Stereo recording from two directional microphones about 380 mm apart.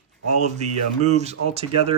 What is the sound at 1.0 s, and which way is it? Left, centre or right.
Speech, centre.